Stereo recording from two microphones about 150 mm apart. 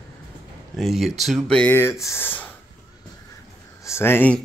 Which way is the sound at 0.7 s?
Centre (ahead or behind).